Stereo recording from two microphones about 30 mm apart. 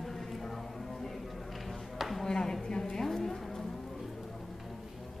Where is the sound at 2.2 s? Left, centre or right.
Centre.